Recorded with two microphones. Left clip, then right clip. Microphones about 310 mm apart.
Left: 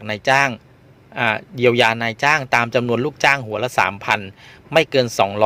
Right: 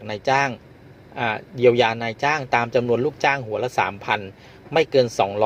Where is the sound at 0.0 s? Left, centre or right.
Left.